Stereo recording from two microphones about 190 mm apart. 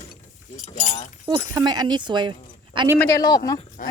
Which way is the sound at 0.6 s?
40° left (ahead or behind).